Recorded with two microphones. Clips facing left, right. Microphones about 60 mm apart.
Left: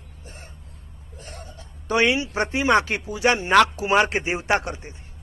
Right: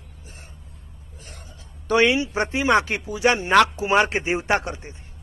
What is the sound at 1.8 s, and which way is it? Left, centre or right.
Speech, left.